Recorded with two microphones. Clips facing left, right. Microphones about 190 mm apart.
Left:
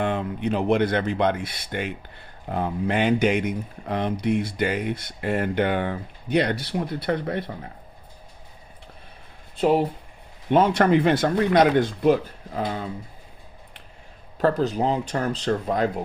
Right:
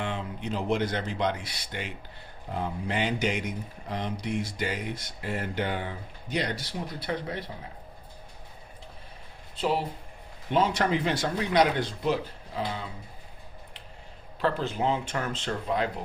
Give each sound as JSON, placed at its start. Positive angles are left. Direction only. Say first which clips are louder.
{"t": 0.0, "sound": "speech", "louder": "left 8 dB", "side_deg": 55}
{"t": 9.6, "sound": "speech", "louder": "left 8 dB", "side_deg": 50}
{"t": 14.3, "sound": "speech", "louder": "left 7 dB", "side_deg": 40}